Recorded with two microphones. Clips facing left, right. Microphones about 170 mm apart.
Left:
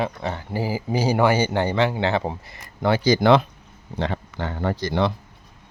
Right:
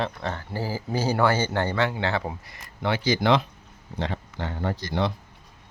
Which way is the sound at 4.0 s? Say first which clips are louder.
Left 4 dB; 65° left (ahead or behind).